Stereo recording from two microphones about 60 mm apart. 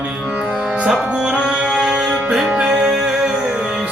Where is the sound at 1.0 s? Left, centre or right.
Centre.